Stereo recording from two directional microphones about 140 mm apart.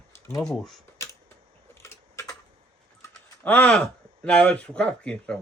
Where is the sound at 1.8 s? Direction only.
20° left (ahead or behind).